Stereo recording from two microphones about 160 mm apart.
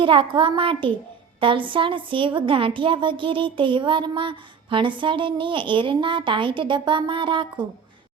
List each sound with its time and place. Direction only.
0.0 s a woman's voice: 30° right (ahead or behind)